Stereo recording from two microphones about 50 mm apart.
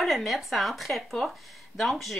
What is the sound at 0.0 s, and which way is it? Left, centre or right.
Speech, centre.